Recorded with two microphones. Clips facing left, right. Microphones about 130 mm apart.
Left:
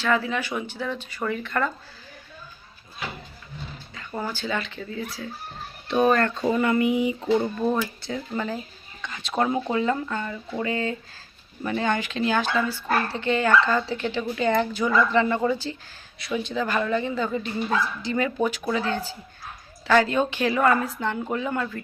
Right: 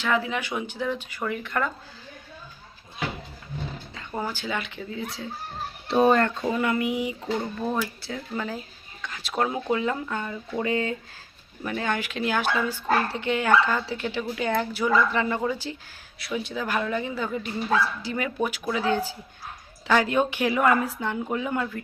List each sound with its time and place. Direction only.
0.0 s speech: 15° right (ahead or behind)
4.1 s speech: 15° right (ahead or behind)
6.4 s speech: centre (ahead or behind)
11.6 s speech: centre (ahead or behind)